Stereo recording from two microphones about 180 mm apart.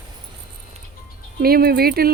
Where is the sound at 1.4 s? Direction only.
55° right (ahead or behind).